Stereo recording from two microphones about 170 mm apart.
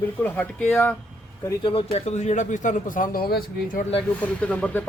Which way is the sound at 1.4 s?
30° left (ahead or behind).